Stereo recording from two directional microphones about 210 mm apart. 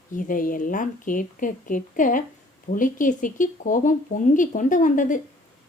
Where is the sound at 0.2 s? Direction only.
40° left (ahead or behind).